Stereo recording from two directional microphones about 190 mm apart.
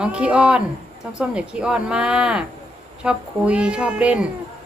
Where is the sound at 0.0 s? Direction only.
5° right (ahead or behind).